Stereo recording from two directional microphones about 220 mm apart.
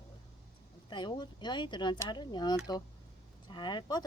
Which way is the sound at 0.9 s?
20° left (ahead or behind).